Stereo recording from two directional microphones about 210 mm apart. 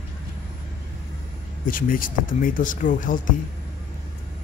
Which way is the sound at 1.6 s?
40° left (ahead or behind).